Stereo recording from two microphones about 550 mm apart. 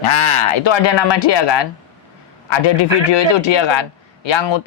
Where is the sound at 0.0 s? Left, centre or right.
Left.